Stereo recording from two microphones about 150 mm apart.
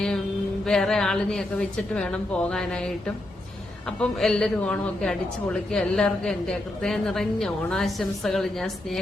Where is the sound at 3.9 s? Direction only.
5° left (ahead or behind).